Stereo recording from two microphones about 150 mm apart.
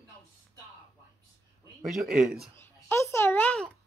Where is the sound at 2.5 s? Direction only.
15° left (ahead or behind).